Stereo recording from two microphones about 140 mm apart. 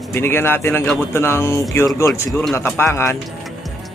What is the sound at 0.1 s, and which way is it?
Speech, 15° left (ahead or behind).